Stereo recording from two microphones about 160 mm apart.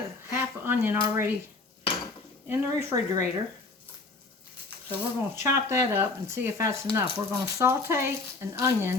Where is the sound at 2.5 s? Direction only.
20° right (ahead or behind).